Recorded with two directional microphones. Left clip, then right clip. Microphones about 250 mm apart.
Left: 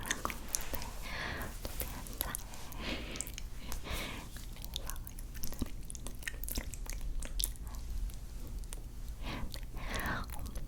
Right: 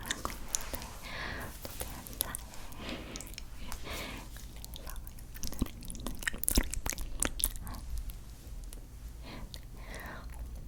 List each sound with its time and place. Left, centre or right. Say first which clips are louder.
0.0 s a sound: even; centre
5.4 s chewing: right 5 dB; centre
6.1 s biting: right 9 dB; right
9.2 s whispering: left 4 dB; centre